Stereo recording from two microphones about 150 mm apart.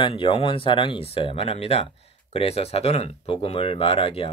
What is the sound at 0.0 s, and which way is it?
Speech, 35° left (ahead or behind).